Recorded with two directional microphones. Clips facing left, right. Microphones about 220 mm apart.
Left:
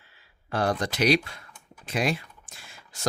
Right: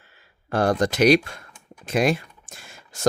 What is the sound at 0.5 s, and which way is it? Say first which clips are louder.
Speech: right 6 dB; 45° right (ahead or behind).